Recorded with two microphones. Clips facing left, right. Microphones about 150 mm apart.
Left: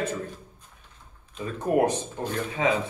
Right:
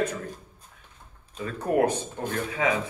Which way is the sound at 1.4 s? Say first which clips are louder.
Even; 20° left (ahead or behind).